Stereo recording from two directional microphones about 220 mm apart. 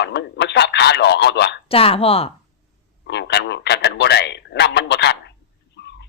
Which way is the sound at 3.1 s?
50° left (ahead or behind).